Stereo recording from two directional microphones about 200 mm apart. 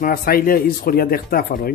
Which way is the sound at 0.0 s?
45° left (ahead or behind).